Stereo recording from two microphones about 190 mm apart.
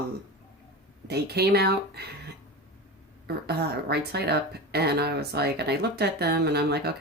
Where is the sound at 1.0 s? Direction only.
60° right (ahead or behind).